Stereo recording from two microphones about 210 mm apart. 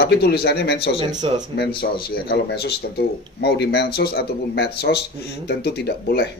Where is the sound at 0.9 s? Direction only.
30° right (ahead or behind).